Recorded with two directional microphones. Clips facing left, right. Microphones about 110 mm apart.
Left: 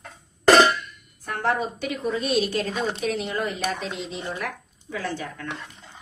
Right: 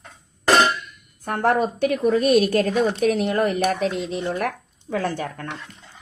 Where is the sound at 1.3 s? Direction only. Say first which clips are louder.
Right 5 dB; 50° right (ahead or behind).